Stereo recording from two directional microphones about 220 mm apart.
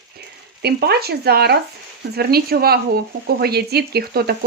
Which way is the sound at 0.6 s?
45° right (ahead or behind).